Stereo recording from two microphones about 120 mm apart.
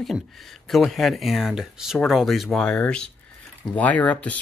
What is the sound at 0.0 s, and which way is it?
Speech, centre (ahead or behind).